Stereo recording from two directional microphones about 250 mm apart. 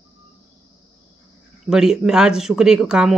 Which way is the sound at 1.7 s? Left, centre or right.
Centre.